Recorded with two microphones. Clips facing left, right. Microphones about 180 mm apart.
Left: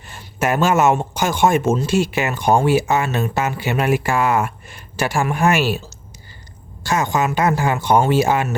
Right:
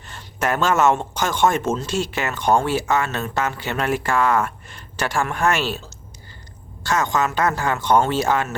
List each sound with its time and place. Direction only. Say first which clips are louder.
0.1 s speech: left 3 dB; 10° left (ahead or behind)
6.8 s speech: left 2 dB; 10° left (ahead or behind)